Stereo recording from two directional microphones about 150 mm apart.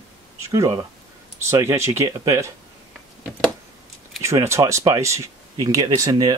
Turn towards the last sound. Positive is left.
turn(degrees=-25)  # may be behind; listen again after turning